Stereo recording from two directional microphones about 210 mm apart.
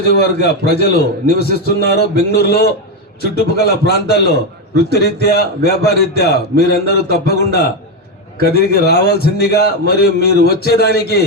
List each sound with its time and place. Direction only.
0.0 s a man's voice: 50° left (ahead or behind)